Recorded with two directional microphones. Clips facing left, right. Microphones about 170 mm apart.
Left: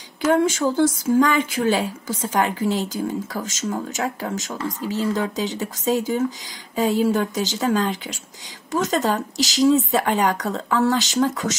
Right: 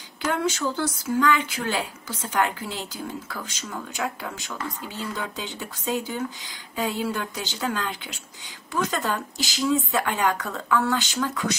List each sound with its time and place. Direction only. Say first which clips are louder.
0.3 s speech: left 7 dB; 50° left (ahead or behind)